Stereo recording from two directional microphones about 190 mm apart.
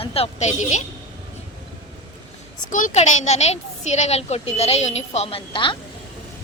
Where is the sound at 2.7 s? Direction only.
45° left (ahead or behind); by 5.7 s 25° left (ahead or behind).